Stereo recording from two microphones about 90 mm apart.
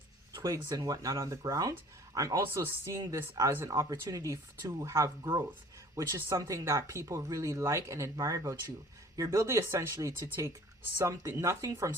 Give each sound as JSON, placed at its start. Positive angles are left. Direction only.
{"t": 0.4, "sound": "a woman's voice", "side_deg": -40}